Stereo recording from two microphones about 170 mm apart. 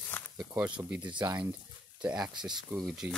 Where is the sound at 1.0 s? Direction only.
25° right (ahead or behind).